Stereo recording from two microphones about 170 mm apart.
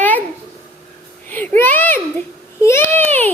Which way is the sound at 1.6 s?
10° left (ahead or behind).